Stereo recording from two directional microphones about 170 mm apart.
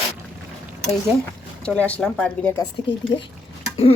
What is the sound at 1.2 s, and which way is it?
Speech, 5° left (ahead or behind).